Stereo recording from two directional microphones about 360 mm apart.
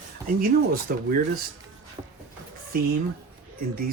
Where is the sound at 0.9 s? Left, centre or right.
Right.